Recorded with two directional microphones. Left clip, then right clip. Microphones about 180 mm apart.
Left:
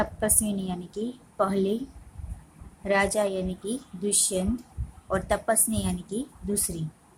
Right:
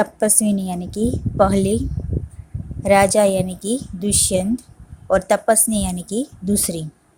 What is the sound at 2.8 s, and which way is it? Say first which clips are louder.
A woman's voice: right 10 dB; 40° right (ahead or behind).